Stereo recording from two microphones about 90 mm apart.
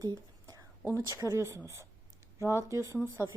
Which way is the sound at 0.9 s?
40° right (ahead or behind).